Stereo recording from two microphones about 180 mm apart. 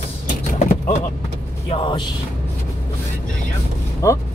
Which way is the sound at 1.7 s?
30° left (ahead or behind).